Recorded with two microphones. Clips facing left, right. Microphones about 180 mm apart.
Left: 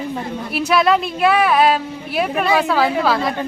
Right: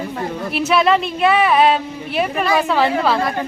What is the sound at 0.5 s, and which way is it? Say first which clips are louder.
Speech: even; centre (ahead or behind).